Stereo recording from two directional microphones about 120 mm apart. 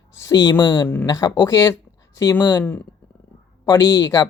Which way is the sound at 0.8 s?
15° left (ahead or behind).